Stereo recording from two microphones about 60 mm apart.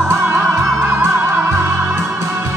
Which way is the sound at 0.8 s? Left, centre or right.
Right.